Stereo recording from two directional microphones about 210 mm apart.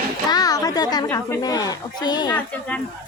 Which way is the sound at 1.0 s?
15° left (ahead or behind).